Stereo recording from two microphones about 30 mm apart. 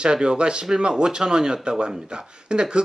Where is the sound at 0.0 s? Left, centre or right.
Right.